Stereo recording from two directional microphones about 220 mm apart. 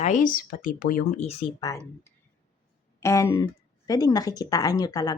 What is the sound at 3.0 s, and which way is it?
A woman's voice, 15° left (ahead or behind).